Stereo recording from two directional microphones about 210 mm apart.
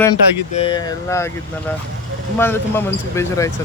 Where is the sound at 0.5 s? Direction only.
25° left (ahead or behind).